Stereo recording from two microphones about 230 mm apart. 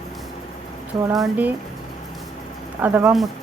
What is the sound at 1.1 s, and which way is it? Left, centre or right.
Speech, centre.